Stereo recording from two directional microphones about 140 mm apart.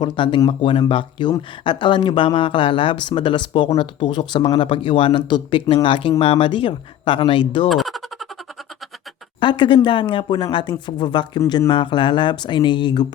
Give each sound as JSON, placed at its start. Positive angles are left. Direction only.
{"t": 0.0, "sound": "speech", "side_deg": 35}
{"t": 7.7, "sound": "a sound", "side_deg": 0}
{"t": 9.4, "sound": "speech", "side_deg": 35}